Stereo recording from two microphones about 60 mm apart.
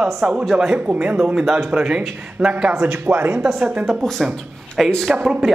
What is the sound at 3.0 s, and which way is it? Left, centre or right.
Speech, right.